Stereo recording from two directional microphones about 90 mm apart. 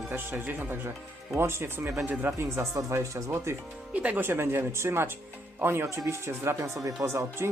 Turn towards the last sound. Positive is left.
turn(degrees=-30)  # may be behind; listen again after turning